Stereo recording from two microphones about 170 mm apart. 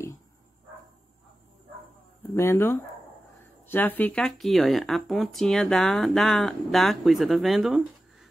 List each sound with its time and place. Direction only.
2.3 s speech: 15° left (ahead or behind); by 8.3 s centre (ahead or behind)